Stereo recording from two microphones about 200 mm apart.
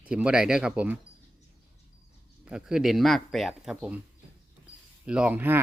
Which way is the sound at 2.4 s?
5° right (ahead or behind).